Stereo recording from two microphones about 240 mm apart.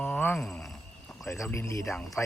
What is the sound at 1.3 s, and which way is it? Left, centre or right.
Speech, centre.